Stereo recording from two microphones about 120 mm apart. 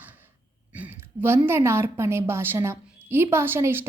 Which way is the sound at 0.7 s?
15° right (ahead or behind).